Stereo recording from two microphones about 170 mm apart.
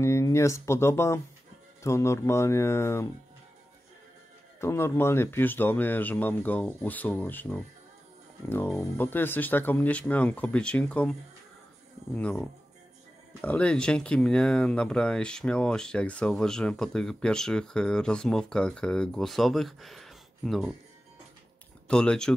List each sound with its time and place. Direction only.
0.0 s speech: 15° left (ahead or behind)
4.6 s speech: 15° left (ahead or behind)
8.9 s speech: 10° left (ahead or behind)
21.8 s speech: 5° left (ahead or behind)